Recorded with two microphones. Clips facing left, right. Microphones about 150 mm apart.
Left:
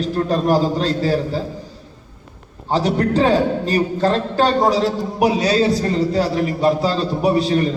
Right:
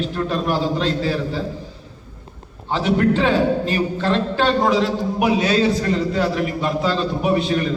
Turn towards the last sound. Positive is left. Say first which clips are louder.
# left 3 dB
turn(degrees=35)  # may be behind; listen again after turning